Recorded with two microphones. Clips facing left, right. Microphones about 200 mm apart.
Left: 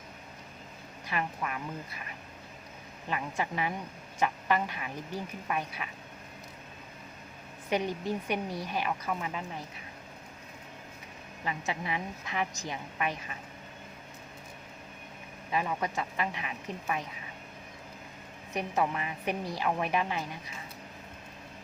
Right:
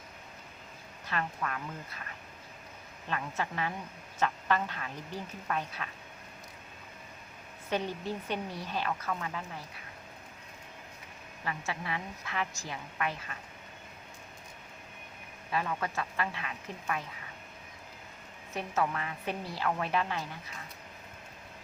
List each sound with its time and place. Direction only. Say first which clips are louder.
1.0 s a woman's voice: left 1 dB; 15° left (ahead or behind)
3.1 s a woman's voice: left 2 dB; 15° left (ahead or behind)
7.7 s a woman's voice: left 3 dB; 15° left (ahead or behind)
11.4 s a woman's voice: left 2 dB; 20° left (ahead or behind)
15.5 s a woman's voice: left 2 dB; 15° left (ahead or behind)
18.5 s a woman's voice: left 2 dB; 15° left (ahead or behind)